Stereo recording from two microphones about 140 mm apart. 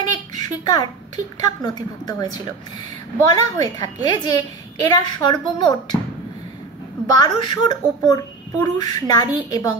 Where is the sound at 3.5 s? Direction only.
30° left (ahead or behind).